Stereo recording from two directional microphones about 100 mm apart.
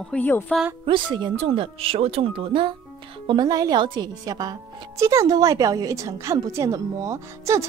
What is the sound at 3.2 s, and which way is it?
Speech, 45° right (ahead or behind).